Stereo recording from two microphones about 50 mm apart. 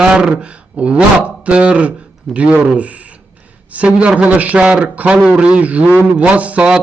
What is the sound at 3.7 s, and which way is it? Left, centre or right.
Speech, right.